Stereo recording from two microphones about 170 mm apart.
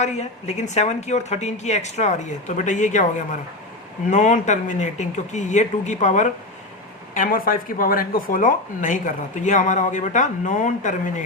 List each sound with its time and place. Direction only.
0.0 s a woman's voice: 40° left (ahead or behind)